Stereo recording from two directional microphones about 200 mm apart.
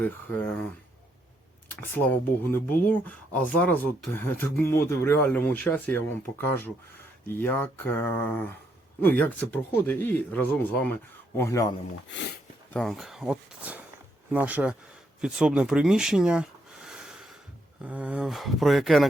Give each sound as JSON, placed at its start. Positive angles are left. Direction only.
{"t": 0.0, "sound": "speech", "side_deg": 10}
{"t": 1.6, "sound": "speech", "side_deg": 10}
{"t": 7.3, "sound": "speech", "side_deg": 10}
{"t": 12.7, "sound": "speech", "side_deg": 0}
{"t": 15.2, "sound": "a sound", "side_deg": -5}
{"t": 17.8, "sound": "speech", "side_deg": -5}